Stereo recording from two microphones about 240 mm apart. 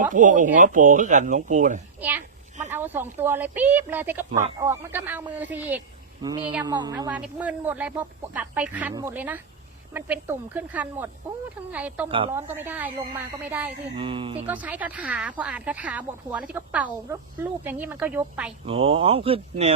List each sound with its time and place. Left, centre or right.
0.0 s speech: right
2.0 s a child's voice: centre
6.2 s speech: centre
13.9 s speech: right
14.4 s speech: centre
18.6 s speech: right